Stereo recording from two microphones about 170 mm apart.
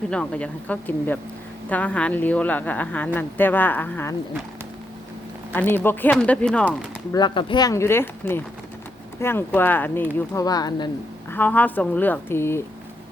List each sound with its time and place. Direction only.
0.1 s a woman's voice: 5° left (ahead or behind)
5.5 s a woman's voice: 10° left (ahead or behind)
7.1 s a woman's voice: 25° left (ahead or behind)
11.3 s a woman's voice: 10° left (ahead or behind)